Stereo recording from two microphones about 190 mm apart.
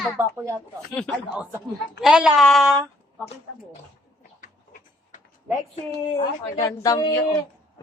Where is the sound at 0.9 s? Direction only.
5° left (ahead or behind).